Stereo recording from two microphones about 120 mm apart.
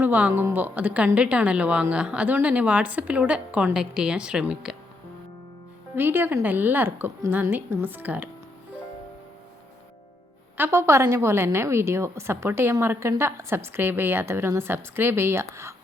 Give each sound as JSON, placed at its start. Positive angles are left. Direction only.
{"t": 0.0, "sound": "a woman's voice", "side_deg": -15}
{"t": 6.0, "sound": "a woman's voice", "side_deg": -20}
{"t": 10.6, "sound": "a woman's voice", "side_deg": -25}